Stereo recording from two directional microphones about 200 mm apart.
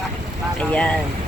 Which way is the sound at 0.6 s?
5° left (ahead or behind).